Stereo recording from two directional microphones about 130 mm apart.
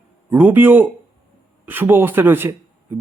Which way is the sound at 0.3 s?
15° right (ahead or behind).